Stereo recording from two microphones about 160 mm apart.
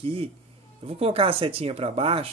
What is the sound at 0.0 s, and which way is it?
Speech, 35° right (ahead or behind).